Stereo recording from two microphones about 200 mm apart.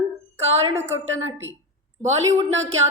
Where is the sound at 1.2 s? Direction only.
10° right (ahead or behind).